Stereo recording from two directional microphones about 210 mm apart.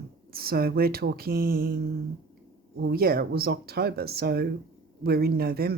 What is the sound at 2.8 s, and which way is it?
Speech, 50° right (ahead or behind).